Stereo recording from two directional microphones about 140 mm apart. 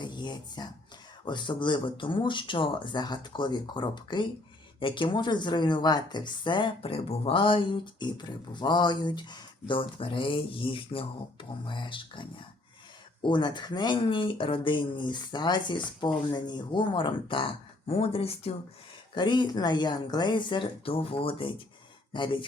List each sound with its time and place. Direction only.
0.0 s a woman's voice: 30° left (ahead or behind)
19.1 s a woman's voice: 35° left (ahead or behind)